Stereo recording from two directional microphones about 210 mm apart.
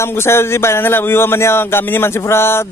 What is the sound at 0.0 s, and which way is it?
Speech, 10° left (ahead or behind).